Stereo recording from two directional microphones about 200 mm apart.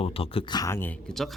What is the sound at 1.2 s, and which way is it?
Speech, centre (ahead or behind).